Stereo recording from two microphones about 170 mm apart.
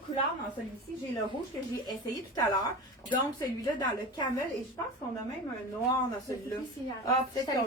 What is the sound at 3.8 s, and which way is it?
Speech, 25° left (ahead or behind).